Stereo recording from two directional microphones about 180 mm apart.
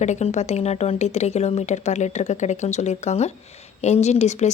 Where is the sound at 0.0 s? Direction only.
40° left (ahead or behind).